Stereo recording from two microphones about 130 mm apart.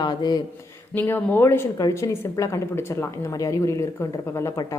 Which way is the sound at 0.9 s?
15° left (ahead or behind).